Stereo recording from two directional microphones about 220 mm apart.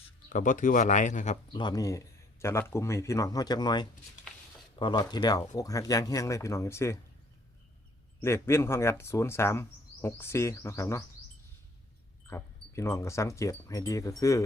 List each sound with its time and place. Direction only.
0.3 s speech: 35° left (ahead or behind)
1.5 s speech: 20° left (ahead or behind)
8.2 s speech: 10° left (ahead or behind)
12.3 s speech: 10° left (ahead or behind)